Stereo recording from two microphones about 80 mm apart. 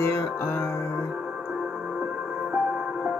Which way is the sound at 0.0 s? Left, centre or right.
Left.